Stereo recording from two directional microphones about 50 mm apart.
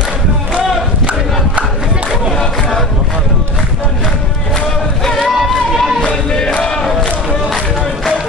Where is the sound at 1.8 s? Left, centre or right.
Right.